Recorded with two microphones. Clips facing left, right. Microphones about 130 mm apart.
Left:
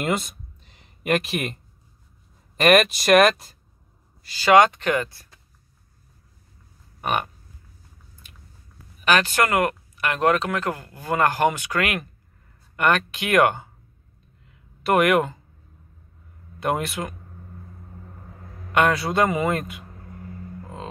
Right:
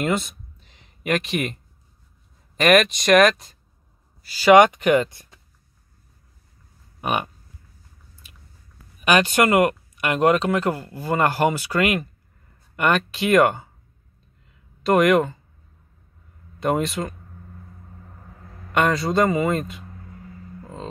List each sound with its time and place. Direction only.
0.0 s a sound: centre (ahead or behind)
2.5 s a man's voice: centre (ahead or behind)
4.6 s speech: 15° right (ahead or behind)
7.0 s a sound: 5° right (ahead or behind)
9.0 s a man's voice: 15° right (ahead or behind)
14.8 s speech: 5° left (ahead or behind)
16.5 s speech: 5° left (ahead or behind)
18.7 s a man's voice: 5° left (ahead or behind)
20.6 s music: 5° left (ahead or behind)